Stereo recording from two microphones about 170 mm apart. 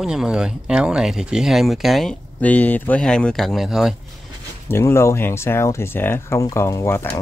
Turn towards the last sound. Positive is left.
turn(degrees=15)  # may be behind; listen again after turning